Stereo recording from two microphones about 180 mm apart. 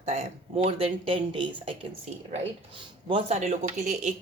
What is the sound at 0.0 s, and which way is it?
Speech, 35° right (ahead or behind).